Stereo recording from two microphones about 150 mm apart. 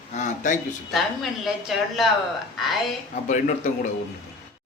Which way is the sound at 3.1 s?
55° left (ahead or behind).